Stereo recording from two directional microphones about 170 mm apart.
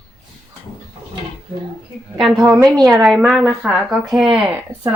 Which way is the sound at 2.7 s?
Centre (ahead or behind).